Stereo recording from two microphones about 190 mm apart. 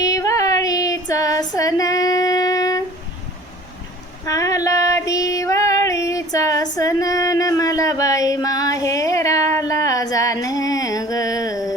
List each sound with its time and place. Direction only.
0.0 s female singing: 15° left (ahead or behind)
4.3 s female singing: 15° left (ahead or behind)
6.7 s a sound: 20° left (ahead or behind)